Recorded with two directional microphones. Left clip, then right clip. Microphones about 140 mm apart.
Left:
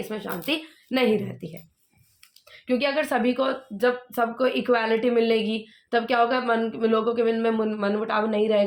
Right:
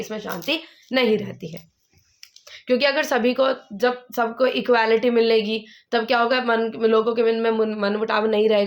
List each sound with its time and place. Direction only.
0.0 s a woman's voice: 25° right (ahead or behind)
2.5 s a woman's voice: 70° right (ahead or behind); by 8.6 s 50° right (ahead or behind)